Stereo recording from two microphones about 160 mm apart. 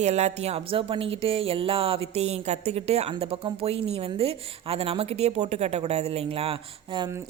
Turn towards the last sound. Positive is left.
turn(degrees=-35)  # may be behind; listen again after turning